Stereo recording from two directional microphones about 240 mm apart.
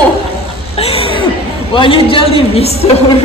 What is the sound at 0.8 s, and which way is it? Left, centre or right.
A woman's voice, left.